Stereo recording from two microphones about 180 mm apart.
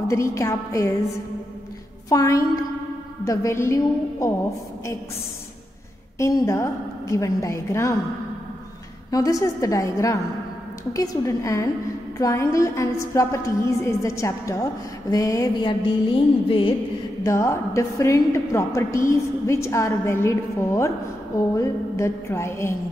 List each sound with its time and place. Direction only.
0.1 s a woman's voice: 15° left (ahead or behind)
2.0 s a woman's voice: 20° left (ahead or behind)
6.1 s a woman's voice: 15° left (ahead or behind)
9.1 s a woman's voice: 20° left (ahead or behind)
17.2 s a woman's voice: 15° left (ahead or behind)